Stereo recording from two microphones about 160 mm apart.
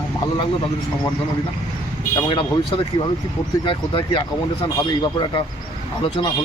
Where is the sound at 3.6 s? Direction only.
30° left (ahead or behind).